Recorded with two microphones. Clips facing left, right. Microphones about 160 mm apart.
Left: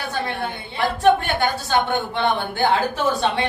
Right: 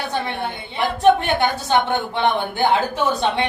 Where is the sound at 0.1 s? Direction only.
20° right (ahead or behind).